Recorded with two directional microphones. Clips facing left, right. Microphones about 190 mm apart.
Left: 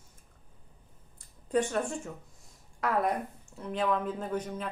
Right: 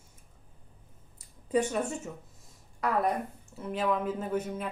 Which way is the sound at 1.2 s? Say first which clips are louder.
Right 1 dB; 5° right (ahead or behind).